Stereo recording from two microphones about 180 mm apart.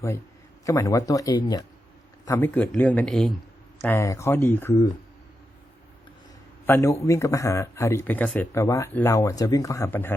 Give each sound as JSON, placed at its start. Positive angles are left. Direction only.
{"t": 0.6, "sound": "speech", "side_deg": 20}
{"t": 6.7, "sound": "speech", "side_deg": 15}